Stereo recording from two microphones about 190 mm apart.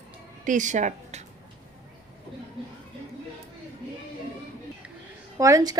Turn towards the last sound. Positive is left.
turn(degrees=-20)  # may be behind; listen again after turning